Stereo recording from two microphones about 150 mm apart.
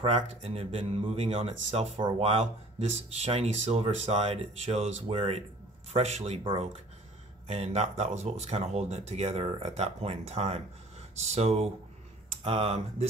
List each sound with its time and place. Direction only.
0.0 s speech: 40° right (ahead or behind)